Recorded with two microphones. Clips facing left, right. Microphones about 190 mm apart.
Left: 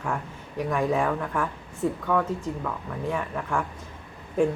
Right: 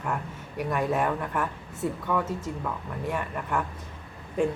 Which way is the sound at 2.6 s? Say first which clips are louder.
Left 1 dB; 5° right (ahead or behind).